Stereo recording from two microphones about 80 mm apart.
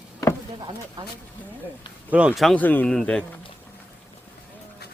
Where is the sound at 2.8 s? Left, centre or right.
Centre.